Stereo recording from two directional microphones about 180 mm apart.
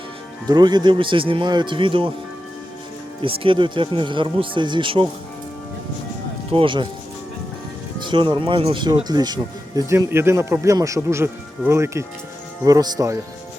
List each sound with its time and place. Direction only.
0.4 s speech: 25° right (ahead or behind)
3.2 s speech: 30° right (ahead or behind)
6.5 s speech: 30° right (ahead or behind)
8.0 s speech: 25° right (ahead or behind)